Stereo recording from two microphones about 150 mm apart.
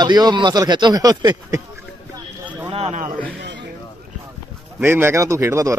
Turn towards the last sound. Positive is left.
turn(degrees=-20)  # may be behind; listen again after turning